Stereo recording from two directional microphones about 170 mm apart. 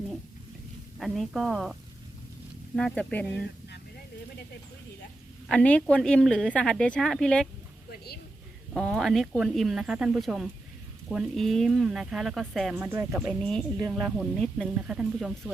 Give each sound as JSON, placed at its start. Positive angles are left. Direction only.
{"t": 0.9, "sound": "speech", "side_deg": 0}
{"t": 2.7, "sound": "speech", "side_deg": 5}
{"t": 5.5, "sound": "speech", "side_deg": 5}
{"t": 7.9, "sound": "a woman's voice", "side_deg": 65}
{"t": 8.7, "sound": "speech", "side_deg": 0}
{"t": 12.8, "sound": "speech", "side_deg": -15}
{"t": 13.4, "sound": "speech", "side_deg": 5}